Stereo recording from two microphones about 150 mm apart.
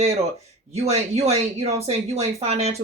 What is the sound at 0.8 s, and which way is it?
Speech, 45° right (ahead or behind).